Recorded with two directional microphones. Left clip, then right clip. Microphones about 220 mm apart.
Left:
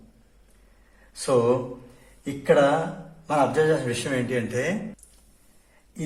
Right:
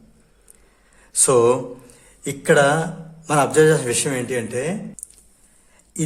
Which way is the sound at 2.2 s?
50° right (ahead or behind).